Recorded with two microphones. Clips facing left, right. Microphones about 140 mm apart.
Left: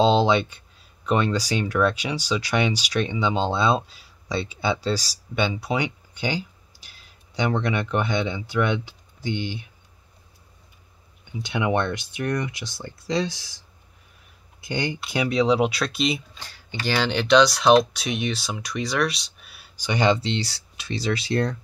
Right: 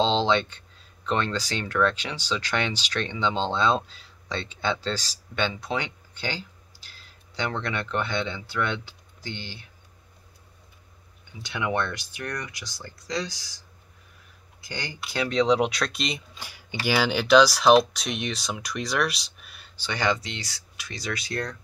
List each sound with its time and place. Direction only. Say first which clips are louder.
0.0 s speech: left 4 dB; 10° left (ahead or behind)
11.3 s speech: left 4 dB; 20° left (ahead or behind)
14.6 s speech: left 8 dB; 25° left (ahead or behind); by 16.2 s centre (ahead or behind)
16.3 s speech: even; 10° right (ahead or behind)
19.8 s speech: left 5 dB; 20° left (ahead or behind)